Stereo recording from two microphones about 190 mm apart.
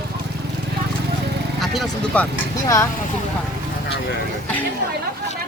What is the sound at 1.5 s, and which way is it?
Speech, centre (ahead or behind).